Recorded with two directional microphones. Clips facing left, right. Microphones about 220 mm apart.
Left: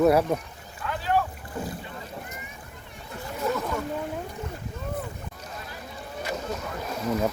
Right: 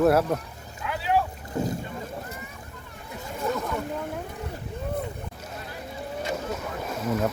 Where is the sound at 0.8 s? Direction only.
10° right (ahead or behind).